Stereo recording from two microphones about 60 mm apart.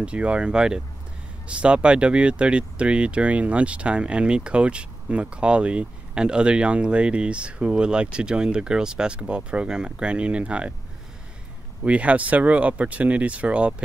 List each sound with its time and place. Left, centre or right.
0.0 s speech: centre
11.8 s speech: right